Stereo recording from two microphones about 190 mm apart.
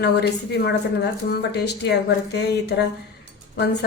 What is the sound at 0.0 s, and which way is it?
A woman's voice, 60° left (ahead or behind).